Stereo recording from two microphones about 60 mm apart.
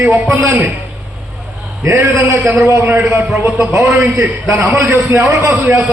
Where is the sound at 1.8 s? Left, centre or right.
Right.